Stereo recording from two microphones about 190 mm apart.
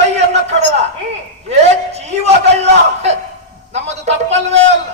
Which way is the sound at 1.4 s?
35° right (ahead or behind).